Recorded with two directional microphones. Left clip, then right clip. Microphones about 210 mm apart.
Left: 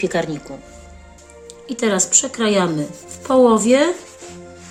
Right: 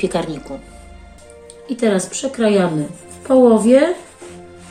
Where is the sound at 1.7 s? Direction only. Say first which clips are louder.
Right 1 dB; 55° left (ahead or behind).